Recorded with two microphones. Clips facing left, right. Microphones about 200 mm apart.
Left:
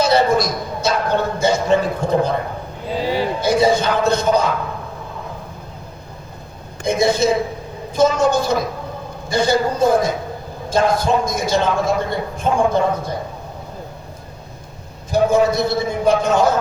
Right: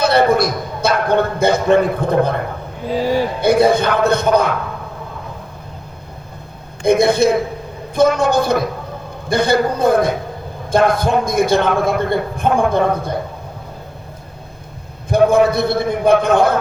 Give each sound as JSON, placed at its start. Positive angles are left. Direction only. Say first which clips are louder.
{"t": 0.0, "sound": "a man's voice", "louder": "right 2 dB", "side_deg": -60}
{"t": 3.4, "sound": "a man's voice", "louder": "right 3 dB", "side_deg": -60}
{"t": 6.8, "sound": "a man's voice", "louder": "right 4 dB", "side_deg": -60}
{"t": 15.1, "sound": "a man's voice", "louder": "right 3 dB", "side_deg": -60}